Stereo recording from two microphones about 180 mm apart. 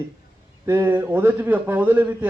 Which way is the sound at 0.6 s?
15° right (ahead or behind).